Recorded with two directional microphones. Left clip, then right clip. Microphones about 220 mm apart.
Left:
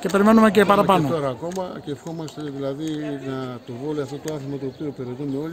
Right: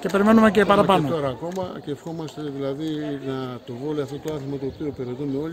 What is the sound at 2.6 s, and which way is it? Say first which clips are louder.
Speech: even; centre (ahead or behind).